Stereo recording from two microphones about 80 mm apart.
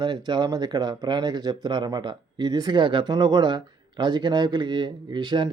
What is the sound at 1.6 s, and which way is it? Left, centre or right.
Speech, right.